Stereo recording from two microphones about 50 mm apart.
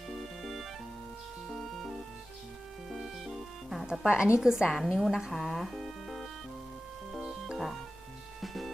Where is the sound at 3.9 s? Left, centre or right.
Centre.